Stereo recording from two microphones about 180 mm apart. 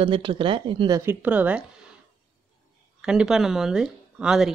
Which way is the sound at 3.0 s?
5° right (ahead or behind).